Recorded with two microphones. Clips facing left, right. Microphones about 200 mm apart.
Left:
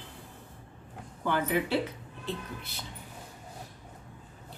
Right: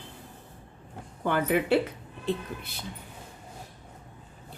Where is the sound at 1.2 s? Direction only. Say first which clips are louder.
Right 3 dB; 55° right (ahead or behind).